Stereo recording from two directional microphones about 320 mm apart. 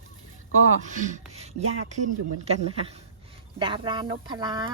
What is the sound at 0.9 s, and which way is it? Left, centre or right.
Speech, right.